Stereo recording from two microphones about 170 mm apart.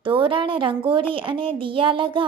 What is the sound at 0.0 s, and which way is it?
A woman's voice, 30° right (ahead or behind).